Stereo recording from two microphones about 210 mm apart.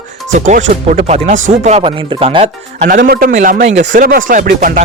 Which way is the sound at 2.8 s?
45° right (ahead or behind).